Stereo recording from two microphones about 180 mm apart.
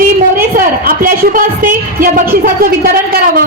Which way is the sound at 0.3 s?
50° right (ahead or behind).